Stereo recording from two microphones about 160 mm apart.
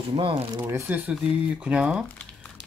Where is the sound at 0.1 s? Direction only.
30° right (ahead or behind).